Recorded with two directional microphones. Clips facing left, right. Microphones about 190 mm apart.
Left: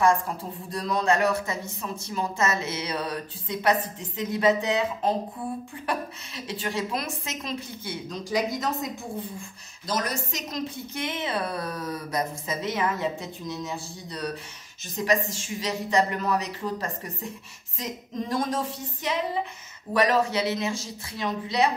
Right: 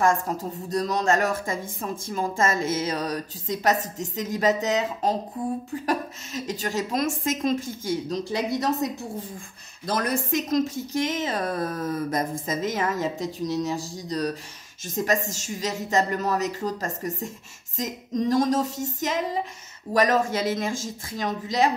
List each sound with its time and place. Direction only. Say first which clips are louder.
0.0 s speech: even; 45° right (ahead or behind)
9.8 s speech: right 4 dB; 55° right (ahead or behind)
17.7 s a sound: right 5 dB; 45° right (ahead or behind)
18.9 s speech: even; 45° right (ahead or behind)